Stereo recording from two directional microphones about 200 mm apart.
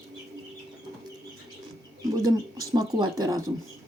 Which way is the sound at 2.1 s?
15° right (ahead or behind).